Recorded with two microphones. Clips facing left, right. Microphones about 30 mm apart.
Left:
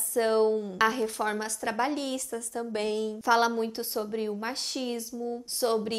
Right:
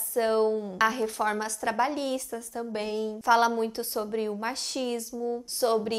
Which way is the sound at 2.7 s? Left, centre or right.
Left.